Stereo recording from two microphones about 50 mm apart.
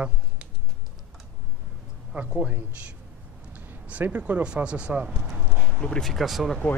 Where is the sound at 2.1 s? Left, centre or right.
Right.